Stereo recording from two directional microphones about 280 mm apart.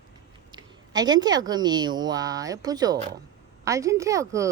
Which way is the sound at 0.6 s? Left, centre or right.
Centre.